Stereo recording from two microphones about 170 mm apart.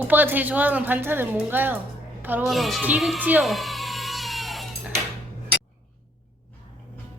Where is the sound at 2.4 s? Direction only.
Centre (ahead or behind).